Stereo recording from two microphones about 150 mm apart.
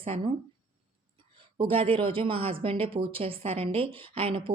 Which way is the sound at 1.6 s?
35° right (ahead or behind).